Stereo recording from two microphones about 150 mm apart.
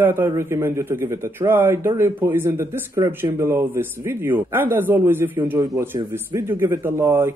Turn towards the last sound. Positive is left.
turn(degrees=-15)  # may be behind; listen again after turning